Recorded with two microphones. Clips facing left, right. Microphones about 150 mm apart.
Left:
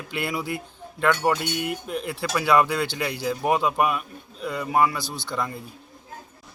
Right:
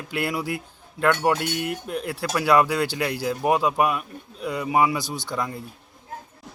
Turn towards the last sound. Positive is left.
turn(degrees=-15)  # may be behind; listen again after turning